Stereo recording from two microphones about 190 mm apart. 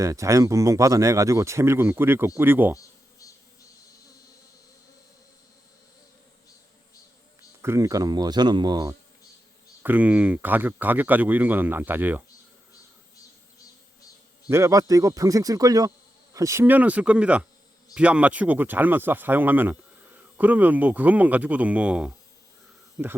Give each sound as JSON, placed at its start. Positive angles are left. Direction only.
{"t": 0.0, "sound": "speech", "side_deg": -15}
{"t": 7.6, "sound": "speech", "side_deg": -15}
{"t": 9.8, "sound": "speech", "side_deg": -10}
{"t": 14.5, "sound": "speech", "side_deg": -15}